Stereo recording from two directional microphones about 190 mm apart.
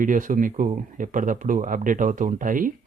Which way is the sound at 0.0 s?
45° right (ahead or behind).